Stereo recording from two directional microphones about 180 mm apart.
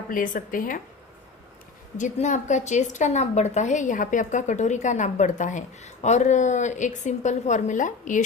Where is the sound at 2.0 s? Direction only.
40° left (ahead or behind).